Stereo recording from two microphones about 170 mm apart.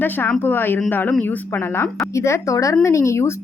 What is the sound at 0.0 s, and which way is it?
A woman's voice, 10° left (ahead or behind).